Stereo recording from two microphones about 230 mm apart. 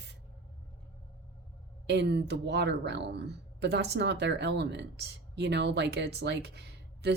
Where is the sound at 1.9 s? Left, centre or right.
Right.